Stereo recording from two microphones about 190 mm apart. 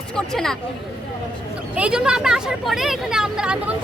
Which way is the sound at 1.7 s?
5° right (ahead or behind).